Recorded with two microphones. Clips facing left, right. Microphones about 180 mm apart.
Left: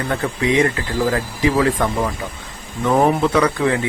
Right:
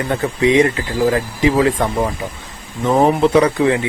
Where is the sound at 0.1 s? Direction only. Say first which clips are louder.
Right 5 dB; 20° right (ahead or behind).